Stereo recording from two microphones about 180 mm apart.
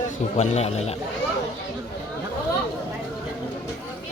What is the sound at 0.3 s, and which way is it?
Speech, 35° left (ahead or behind).